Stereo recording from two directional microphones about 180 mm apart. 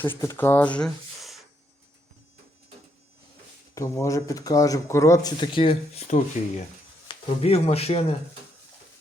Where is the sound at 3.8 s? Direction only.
15° left (ahead or behind); by 8.0 s 35° left (ahead or behind).